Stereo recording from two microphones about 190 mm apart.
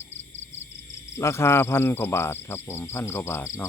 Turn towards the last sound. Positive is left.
turn(degrees=15)  # may be behind; listen again after turning